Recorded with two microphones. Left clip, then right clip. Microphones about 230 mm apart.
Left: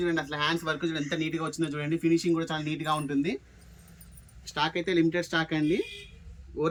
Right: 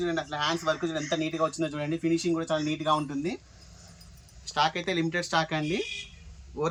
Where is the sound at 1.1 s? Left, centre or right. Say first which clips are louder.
Right 3 dB; centre.